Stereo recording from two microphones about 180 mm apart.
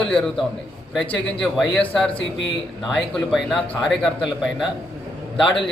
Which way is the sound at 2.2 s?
90° left.